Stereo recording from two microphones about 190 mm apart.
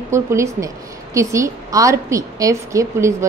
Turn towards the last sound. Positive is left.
turn(degrees=-15)  # may be behind; listen again after turning